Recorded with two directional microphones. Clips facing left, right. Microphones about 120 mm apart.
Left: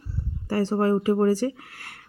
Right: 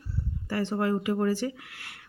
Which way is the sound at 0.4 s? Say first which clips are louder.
Left 5 dB; 40° left (ahead or behind).